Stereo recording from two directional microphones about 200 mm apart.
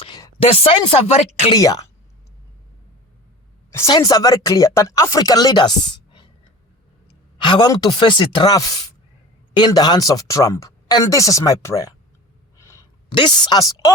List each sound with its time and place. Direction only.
0.0 s speech: 25° left (ahead or behind)
1.5 s speech: 20° left (ahead or behind)
3.8 s speech: 20° left (ahead or behind)
7.3 s speech: 20° left (ahead or behind)
12.5 s a sound: 15° left (ahead or behind)